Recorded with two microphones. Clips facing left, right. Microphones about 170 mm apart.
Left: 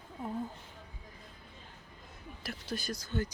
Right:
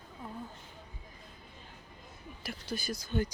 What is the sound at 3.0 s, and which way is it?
Speech, 15° right (ahead or behind).